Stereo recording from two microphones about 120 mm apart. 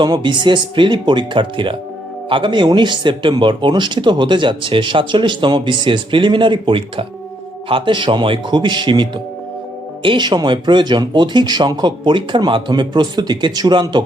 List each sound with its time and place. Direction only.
0.0 s speech: 40° right (ahead or behind)